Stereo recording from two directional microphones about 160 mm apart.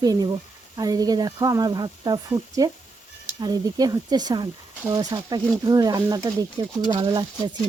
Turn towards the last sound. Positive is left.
turn(degrees=-30)  # may be behind; listen again after turning